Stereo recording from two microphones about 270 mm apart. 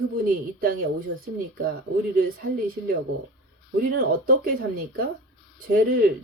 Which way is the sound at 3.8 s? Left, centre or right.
Right.